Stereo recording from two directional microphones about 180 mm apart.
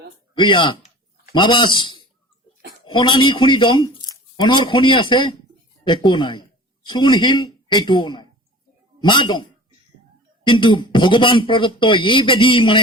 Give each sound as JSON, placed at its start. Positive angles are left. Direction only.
{"t": 0.3, "sound": "speech", "side_deg": 25}